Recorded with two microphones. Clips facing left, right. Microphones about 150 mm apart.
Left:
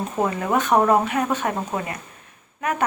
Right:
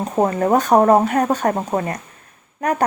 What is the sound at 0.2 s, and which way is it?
Speech, 40° right (ahead or behind).